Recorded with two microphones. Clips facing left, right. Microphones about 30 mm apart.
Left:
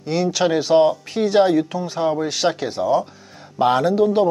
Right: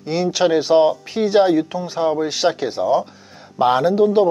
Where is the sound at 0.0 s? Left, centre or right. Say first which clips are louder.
Right 1 dB; centre.